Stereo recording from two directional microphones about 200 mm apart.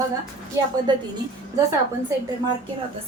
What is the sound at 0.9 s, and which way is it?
Speech, 20° right (ahead or behind).